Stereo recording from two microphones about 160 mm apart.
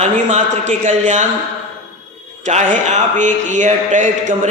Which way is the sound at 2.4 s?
50° right (ahead or behind).